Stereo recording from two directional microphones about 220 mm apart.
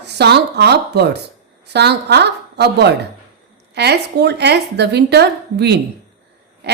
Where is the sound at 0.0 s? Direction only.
50° right (ahead or behind).